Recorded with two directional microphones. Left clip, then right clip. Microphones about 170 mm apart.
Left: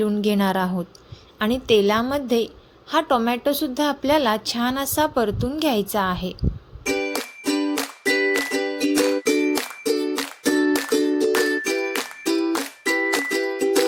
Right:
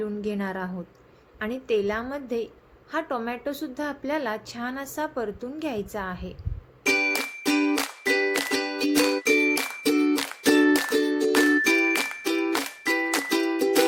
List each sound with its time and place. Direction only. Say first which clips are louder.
0.0 s a woman's voice: left 8 dB; 50° left (ahead or behind)
6.8 s music: right 1 dB; 5° left (ahead or behind)